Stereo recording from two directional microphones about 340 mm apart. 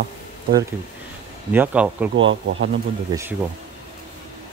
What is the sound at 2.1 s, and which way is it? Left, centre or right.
Speech, right.